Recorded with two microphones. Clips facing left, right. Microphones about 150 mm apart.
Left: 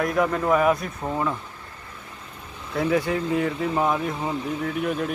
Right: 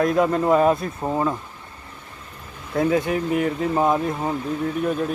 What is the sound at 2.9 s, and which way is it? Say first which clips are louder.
Speech: left 2 dB; 20° right (ahead or behind).